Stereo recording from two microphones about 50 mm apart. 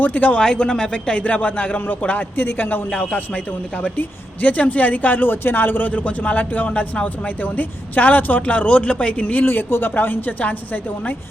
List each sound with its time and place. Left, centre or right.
0.0 s a man's voice: left
0.3 s speech: centre
1.2 s a man's voice: left
2.9 s speech: left
4.4 s a man's voice: left
9.2 s a man's voice: left